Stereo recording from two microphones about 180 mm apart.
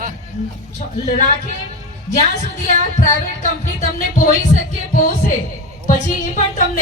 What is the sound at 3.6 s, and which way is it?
Speech, 45° left (ahead or behind).